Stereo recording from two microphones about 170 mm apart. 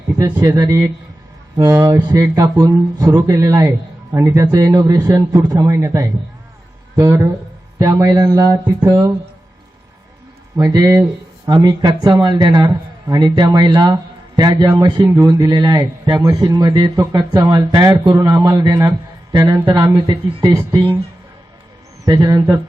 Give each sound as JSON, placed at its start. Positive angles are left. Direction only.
{"t": 0.2, "sound": "a man's voice", "side_deg": -20}
{"t": 10.6, "sound": "a man's voice", "side_deg": -20}
{"t": 22.0, "sound": "a man's voice", "side_deg": -20}